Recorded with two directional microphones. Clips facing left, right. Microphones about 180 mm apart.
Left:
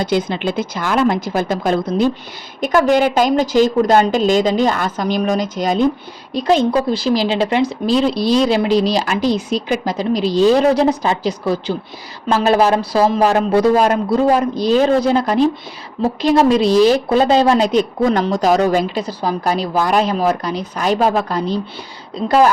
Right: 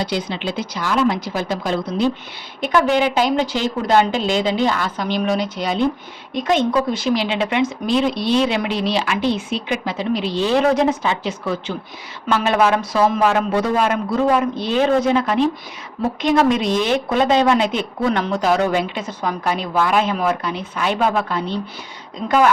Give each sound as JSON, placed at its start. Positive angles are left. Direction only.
{"t": 0.0, "sound": "a woman's voice", "side_deg": 50}